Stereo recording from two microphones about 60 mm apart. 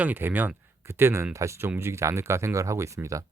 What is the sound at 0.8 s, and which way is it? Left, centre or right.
Speech, right.